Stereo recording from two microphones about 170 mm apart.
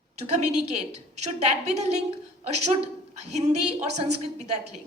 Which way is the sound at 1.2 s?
40° right (ahead or behind).